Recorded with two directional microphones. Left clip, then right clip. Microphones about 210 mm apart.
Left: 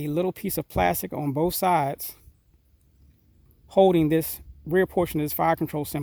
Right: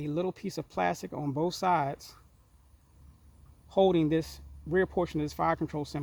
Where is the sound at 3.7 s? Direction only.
50° left (ahead or behind).